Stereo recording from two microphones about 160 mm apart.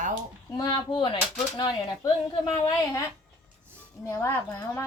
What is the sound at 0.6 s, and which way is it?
A woman's voice, 25° left (ahead or behind).